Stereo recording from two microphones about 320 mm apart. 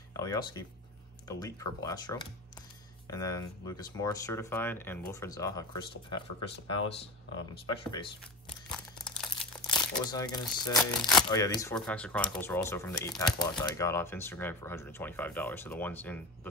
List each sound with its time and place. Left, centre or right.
0.1 s speech: centre
8.5 s crumpling: centre
9.7 s speech: centre